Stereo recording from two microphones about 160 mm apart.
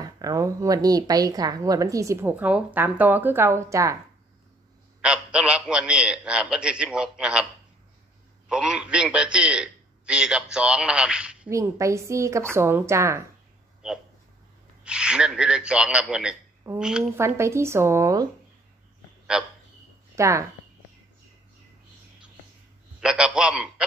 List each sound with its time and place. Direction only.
0.0 s a woman's voice: 20° right (ahead or behind)
5.0 s a man's voice: 5° right (ahead or behind)
8.5 s a man's voice: 5° right (ahead or behind)
11.5 s a woman's voice: 20° right (ahead or behind)
13.8 s a man's voice: 5° right (ahead or behind)
17.2 s a woman's voice: 15° right (ahead or behind)
19.3 s a man's voice: 5° right (ahead or behind)
20.2 s speech: 20° right (ahead or behind)
22.9 s a man's voice: 5° right (ahead or behind)